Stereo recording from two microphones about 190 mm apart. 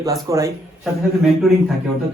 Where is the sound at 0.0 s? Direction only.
15° right (ahead or behind).